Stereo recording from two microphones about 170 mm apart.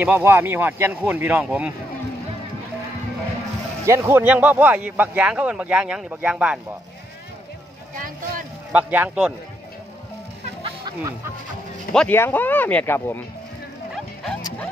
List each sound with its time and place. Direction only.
0.0 s speech: 15° right (ahead or behind)
3.8 s speech: 15° right (ahead or behind)
8.7 s speech: 10° right (ahead or behind)
10.6 s music: 25° right (ahead or behind)
11.9 s speech: 5° left (ahead or behind)
13.9 s bow-wow: 5° left (ahead or behind)